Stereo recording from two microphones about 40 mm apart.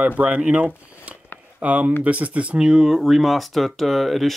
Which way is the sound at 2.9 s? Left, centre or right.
Centre.